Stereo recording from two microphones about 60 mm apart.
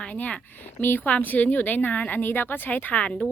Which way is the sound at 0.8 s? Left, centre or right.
Left.